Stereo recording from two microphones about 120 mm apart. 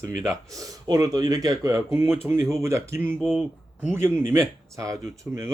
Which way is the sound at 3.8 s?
20° right (ahead or behind).